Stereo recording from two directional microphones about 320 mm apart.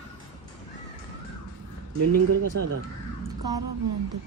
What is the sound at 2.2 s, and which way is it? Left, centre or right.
Speech, right.